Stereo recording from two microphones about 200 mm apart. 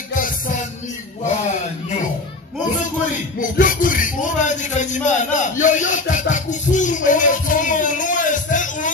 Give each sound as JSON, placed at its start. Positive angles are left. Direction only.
{"t": 3.3, "sound": "music", "side_deg": 40}